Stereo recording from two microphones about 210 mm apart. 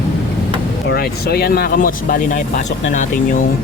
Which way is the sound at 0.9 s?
50° left (ahead or behind).